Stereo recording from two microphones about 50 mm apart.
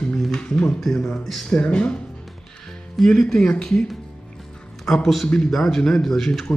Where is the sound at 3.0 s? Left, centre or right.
Centre.